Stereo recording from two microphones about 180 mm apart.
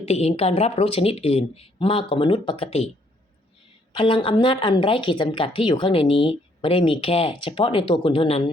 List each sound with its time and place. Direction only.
0.0 s speech: 35° left (ahead or behind)
3.9 s speech: 30° left (ahead or behind)